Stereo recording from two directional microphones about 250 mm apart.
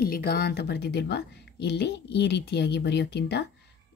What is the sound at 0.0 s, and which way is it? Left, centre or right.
A woman's voice, left.